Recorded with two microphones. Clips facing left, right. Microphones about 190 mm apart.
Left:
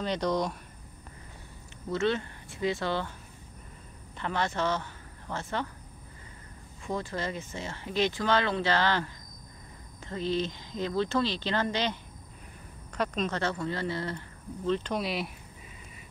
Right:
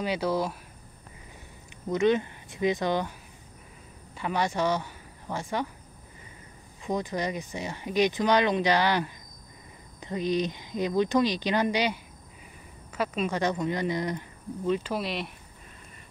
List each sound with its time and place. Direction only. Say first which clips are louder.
0.0 s speech: right 1 dB; 5° right (ahead or behind)
1.9 s speech: right 5 dB; 15° right (ahead or behind)
4.2 s speech: right 3 dB; 15° right (ahead or behind)
6.8 s speech: right 4 dB; 20° right (ahead or behind); by 15.3 s centre (ahead or behind)